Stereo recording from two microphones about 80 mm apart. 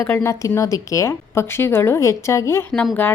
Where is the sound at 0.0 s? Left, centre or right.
Left.